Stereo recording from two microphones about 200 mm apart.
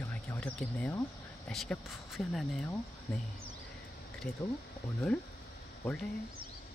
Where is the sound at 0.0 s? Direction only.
10° left (ahead or behind).